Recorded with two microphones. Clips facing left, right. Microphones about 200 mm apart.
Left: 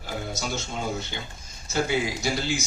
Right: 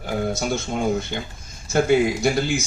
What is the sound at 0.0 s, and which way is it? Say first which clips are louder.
A man's voice: right 8 dB; 55° right (ahead or behind).